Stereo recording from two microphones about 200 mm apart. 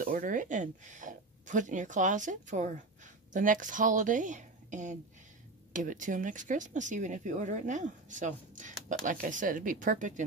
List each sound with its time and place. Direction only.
0.0 s speech: 40° right (ahead or behind)